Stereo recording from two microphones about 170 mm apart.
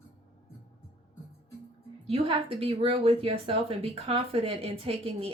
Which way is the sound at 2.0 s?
35° right (ahead or behind).